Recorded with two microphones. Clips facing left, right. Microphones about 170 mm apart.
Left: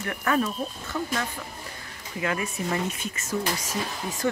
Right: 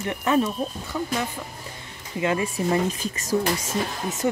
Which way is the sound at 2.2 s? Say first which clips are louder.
Right 5 dB; 25° right (ahead or behind).